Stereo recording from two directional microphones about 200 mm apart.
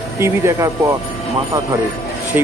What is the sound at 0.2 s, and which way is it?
Speech, 15° right (ahead or behind).